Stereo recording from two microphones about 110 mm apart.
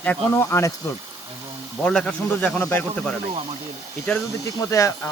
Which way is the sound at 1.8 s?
10° left (ahead or behind).